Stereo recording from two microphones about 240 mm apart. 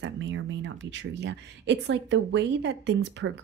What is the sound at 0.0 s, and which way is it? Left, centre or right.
Speech, right.